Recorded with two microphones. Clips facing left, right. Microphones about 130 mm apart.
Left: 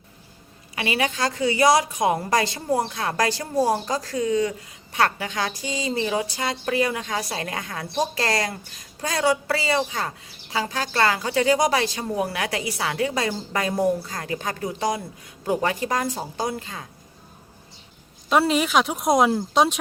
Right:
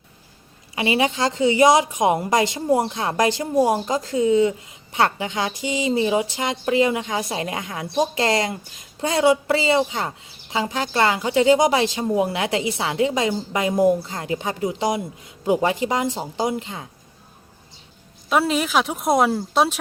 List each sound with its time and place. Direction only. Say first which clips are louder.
0.8 s a woman's voice: right 4 dB; 20° right (ahead or behind)
18.3 s speech: even; centre (ahead or behind)